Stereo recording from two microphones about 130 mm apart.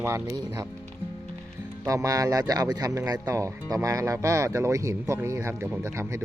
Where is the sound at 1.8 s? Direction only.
25° right (ahead or behind).